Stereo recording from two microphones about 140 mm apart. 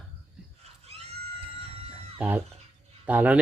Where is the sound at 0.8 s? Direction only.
45° right (ahead or behind).